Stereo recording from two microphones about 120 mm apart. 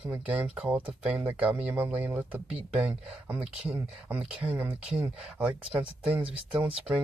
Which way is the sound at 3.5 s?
55° right (ahead or behind).